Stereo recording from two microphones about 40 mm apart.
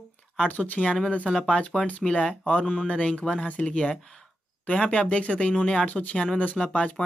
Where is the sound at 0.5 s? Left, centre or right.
Left.